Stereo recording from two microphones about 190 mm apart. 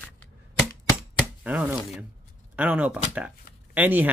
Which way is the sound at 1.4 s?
5° right (ahead or behind).